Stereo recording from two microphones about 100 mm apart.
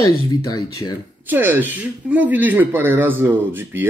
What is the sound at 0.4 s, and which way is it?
Speech, 40° left (ahead or behind).